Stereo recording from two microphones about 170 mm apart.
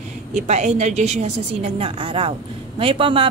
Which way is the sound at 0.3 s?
45° right (ahead or behind).